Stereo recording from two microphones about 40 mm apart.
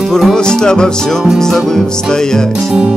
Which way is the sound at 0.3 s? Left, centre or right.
Centre.